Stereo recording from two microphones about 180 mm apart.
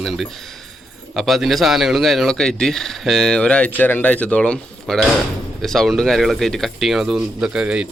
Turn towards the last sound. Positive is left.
turn(degrees=-5)  # may be behind; listen again after turning